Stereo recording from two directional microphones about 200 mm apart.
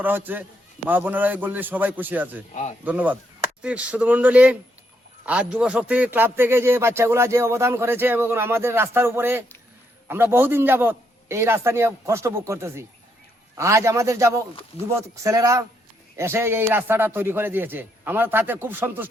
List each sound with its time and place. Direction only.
0.0 s a man's voice: 10° right (ahead or behind)
2.5 s speech: 35° left (ahead or behind)
2.8 s a man's voice: 10° right (ahead or behind)